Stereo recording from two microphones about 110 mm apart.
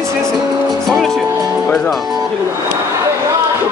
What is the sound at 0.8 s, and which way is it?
Music, centre (ahead or behind).